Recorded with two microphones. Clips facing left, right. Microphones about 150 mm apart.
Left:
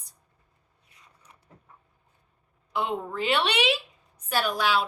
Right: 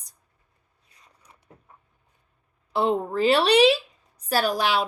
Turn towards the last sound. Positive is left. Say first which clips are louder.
# right 4 dB
turn(degrees=-35)  # may be behind; listen again after turning